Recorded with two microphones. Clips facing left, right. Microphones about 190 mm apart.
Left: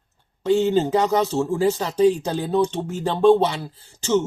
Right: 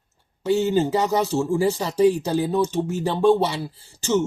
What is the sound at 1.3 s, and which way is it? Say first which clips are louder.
Speech: even; 20° left (ahead or behind).